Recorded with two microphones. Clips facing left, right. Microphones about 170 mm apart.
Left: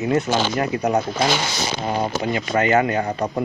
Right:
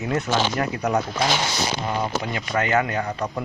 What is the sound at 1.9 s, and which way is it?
Speech, 30° left (ahead or behind).